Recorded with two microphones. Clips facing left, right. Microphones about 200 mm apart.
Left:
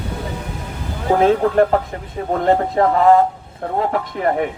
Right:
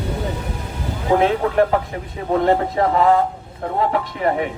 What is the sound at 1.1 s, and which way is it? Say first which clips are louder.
A man's voice: left 2 dB; 45° left (ahead or behind).